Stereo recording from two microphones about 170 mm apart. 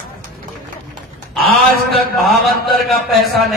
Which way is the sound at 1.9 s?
Centre (ahead or behind).